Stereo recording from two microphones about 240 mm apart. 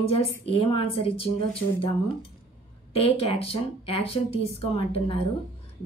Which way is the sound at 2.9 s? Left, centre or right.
Left.